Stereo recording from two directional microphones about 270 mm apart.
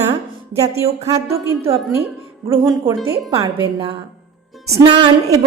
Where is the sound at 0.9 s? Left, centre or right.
Right.